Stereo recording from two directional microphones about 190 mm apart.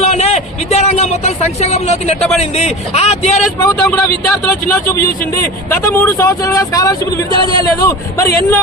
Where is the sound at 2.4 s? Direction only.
35° left (ahead or behind).